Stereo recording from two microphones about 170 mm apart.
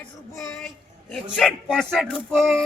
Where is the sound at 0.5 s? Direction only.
5° left (ahead or behind).